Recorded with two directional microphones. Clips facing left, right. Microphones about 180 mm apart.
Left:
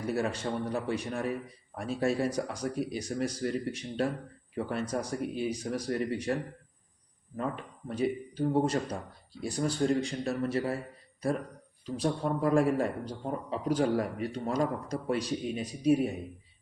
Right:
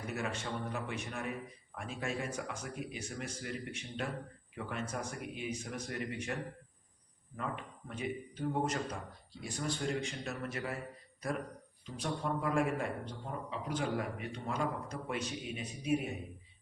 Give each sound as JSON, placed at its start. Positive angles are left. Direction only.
{"t": 0.1, "sound": "a man's voice", "side_deg": 35}
{"t": 7.3, "sound": "a man's voice", "side_deg": 35}
{"t": 11.9, "sound": "a man's voice", "side_deg": 35}